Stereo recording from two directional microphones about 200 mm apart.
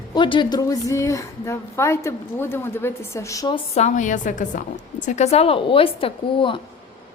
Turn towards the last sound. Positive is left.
turn(degrees=25)  # may be behind; listen again after turning